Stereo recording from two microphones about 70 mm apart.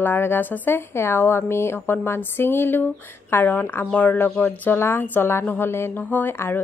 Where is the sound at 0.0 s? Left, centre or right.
Left.